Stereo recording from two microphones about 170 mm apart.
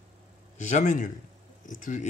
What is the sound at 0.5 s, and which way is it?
Speech, 45° left (ahead or behind).